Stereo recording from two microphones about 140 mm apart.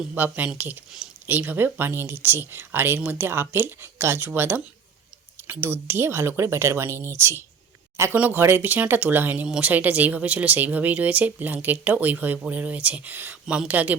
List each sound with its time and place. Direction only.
0.1 s speech: 10° right (ahead or behind)